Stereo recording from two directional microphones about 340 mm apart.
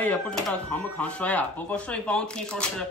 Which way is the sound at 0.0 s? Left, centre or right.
Centre.